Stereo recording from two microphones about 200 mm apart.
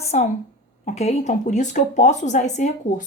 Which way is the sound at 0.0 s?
35° left (ahead or behind).